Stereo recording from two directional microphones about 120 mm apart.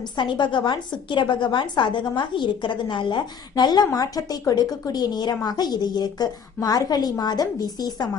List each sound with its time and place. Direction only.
0.2 s a woman's voice: 40° left (ahead or behind)